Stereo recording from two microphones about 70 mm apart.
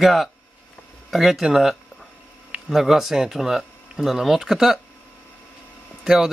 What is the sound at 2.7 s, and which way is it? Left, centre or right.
Speech, centre.